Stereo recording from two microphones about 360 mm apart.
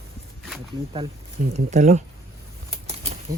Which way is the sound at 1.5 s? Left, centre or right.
Centre.